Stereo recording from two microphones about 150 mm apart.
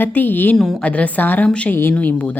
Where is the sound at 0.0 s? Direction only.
10° left (ahead or behind).